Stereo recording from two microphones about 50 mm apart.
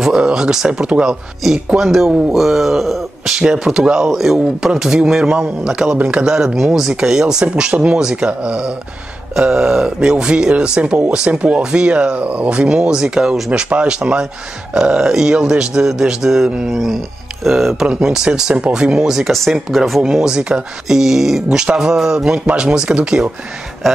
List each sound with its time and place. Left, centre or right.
0.0 s speech: centre
1.4 s speech: centre; by 6.2 s right
6.2 s speech: centre
17.8 s speech: centre
20.9 s speech: centre